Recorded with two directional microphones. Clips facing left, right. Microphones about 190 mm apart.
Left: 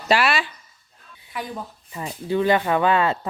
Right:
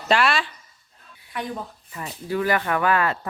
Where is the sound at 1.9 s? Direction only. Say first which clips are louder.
Left 4 dB; 25° left (ahead or behind).